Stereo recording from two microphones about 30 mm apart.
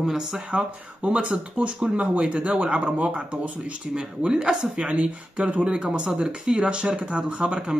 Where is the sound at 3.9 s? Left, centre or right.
Right.